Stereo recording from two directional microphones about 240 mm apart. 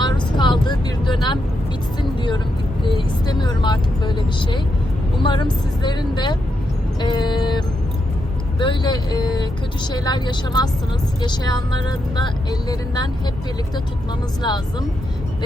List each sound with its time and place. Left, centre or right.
0.0 s vehicle: centre
2.8 s speech: centre
7.0 s vehicle: centre
8.5 s speech: centre
14.4 s speech: centre